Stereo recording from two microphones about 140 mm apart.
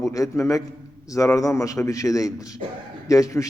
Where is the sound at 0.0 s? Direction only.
25° left (ahead or behind).